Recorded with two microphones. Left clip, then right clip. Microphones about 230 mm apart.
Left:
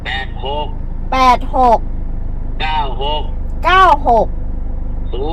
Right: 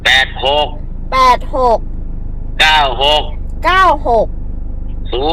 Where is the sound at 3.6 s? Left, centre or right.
Right.